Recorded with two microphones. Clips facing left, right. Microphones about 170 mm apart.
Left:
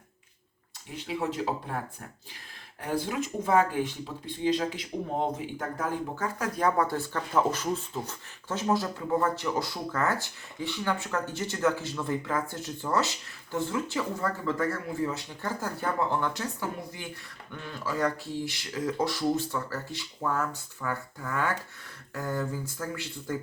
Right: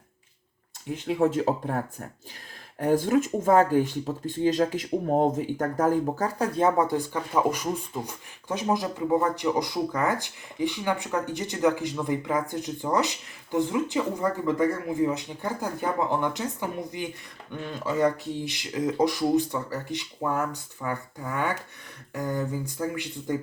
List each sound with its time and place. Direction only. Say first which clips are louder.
0.9 s speech: right 7 dB; 50° right (ahead or behind)
2.8 s speech: right 8 dB; 45° right (ahead or behind); by 23.4 s 15° right (ahead or behind)